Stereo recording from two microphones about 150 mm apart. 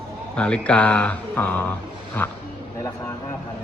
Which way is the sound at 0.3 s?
5° left (ahead or behind).